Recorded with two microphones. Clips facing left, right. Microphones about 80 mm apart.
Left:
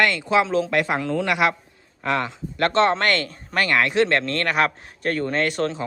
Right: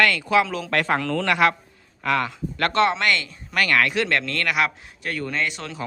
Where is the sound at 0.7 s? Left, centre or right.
Centre.